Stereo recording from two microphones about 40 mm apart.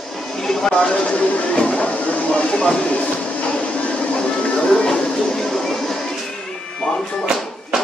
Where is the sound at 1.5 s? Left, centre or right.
Left.